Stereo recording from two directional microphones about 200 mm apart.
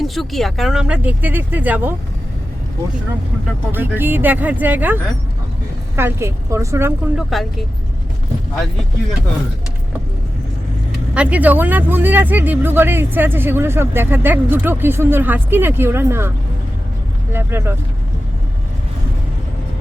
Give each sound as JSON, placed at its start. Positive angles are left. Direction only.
{"t": 0.0, "sound": "speech", "side_deg": 0}
{"t": 3.7, "sound": "speech", "side_deg": -10}
{"t": 11.1, "sound": "speech", "side_deg": -5}
{"t": 17.3, "sound": "speech", "side_deg": -10}